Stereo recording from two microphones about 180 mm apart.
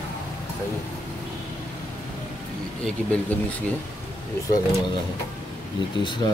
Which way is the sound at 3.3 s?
10° left (ahead or behind).